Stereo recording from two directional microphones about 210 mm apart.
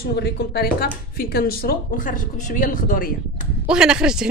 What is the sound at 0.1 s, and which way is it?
Speech, 50° left (ahead or behind).